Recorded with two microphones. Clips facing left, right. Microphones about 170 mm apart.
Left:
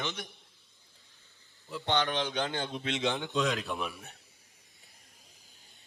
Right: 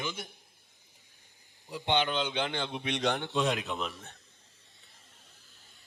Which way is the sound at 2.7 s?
65° right (ahead or behind).